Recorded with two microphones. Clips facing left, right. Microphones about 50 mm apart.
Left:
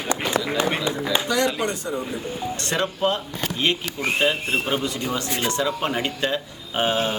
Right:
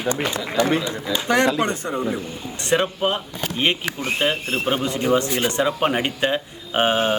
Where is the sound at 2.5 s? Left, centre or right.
Centre.